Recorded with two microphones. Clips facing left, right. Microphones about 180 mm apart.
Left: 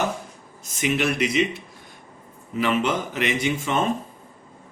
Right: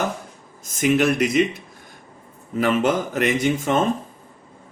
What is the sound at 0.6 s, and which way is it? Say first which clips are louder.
Speech: right 5 dB; 50° right (ahead or behind).